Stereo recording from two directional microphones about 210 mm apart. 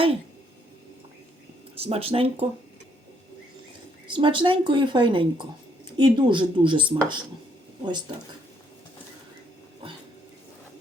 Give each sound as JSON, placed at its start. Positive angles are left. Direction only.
{"t": 1.8, "sound": "speech", "side_deg": -25}
{"t": 4.0, "sound": "speech", "side_deg": -25}